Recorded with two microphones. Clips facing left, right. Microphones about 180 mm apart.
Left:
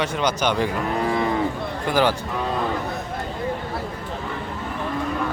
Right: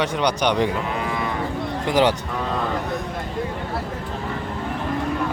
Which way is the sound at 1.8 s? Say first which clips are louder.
Right 1 dB; 20° right (ahead or behind).